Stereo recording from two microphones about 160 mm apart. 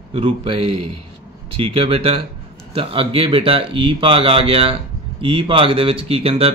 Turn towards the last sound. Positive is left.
turn(degrees=-35)  # may be behind; listen again after turning